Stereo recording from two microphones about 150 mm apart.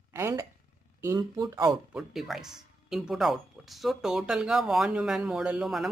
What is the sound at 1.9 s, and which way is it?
Speech, centre (ahead or behind).